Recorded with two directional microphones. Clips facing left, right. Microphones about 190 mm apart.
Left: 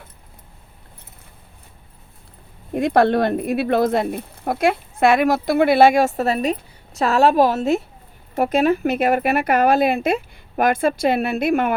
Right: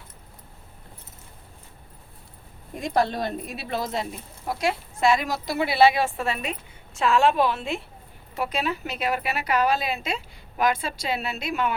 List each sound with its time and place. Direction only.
2.7 s a woman's voice: 60° left (ahead or behind)